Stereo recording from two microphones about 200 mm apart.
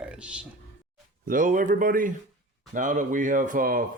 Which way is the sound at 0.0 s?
5° right (ahead or behind).